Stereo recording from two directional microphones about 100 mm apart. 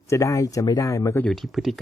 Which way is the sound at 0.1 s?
35° left (ahead or behind).